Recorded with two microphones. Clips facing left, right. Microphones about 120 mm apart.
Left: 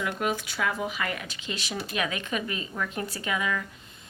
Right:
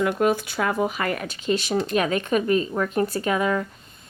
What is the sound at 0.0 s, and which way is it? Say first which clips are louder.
Speech: right 8 dB; 45° right (ahead or behind).